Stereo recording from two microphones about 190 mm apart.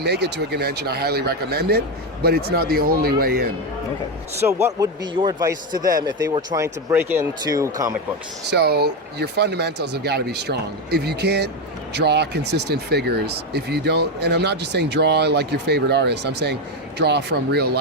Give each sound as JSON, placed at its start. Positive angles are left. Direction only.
{"t": 0.0, "sound": "a man's voice", "side_deg": -60}
{"t": 4.8, "sound": "a man's voice", "side_deg": -20}
{"t": 8.4, "sound": "speech", "side_deg": -60}